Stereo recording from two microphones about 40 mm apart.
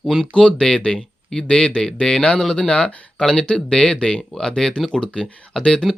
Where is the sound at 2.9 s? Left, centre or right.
Left.